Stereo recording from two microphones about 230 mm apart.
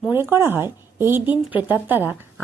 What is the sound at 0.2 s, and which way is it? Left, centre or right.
Speech, centre.